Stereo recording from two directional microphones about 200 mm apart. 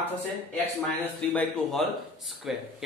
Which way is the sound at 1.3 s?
Centre (ahead or behind).